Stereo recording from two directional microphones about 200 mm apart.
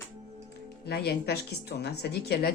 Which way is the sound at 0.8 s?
50° left (ahead or behind).